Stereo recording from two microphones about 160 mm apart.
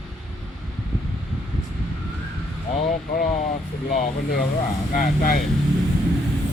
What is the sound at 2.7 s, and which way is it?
Speech, 55° left (ahead or behind).